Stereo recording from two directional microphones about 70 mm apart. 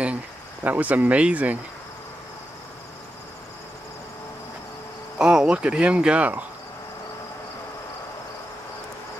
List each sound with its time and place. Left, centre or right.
0.7 s speech: right
5.2 s speech: centre